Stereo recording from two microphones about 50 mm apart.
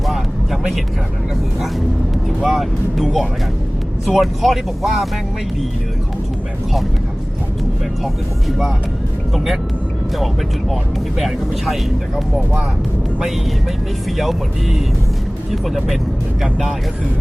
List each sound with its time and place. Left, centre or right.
2.4 s speech: centre
8.0 s speech: centre
11.2 s speech: centre
14.2 s speech: centre